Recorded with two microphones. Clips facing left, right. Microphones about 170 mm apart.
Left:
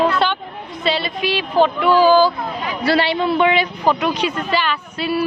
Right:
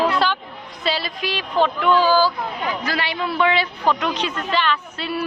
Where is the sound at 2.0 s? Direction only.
20° left (ahead or behind).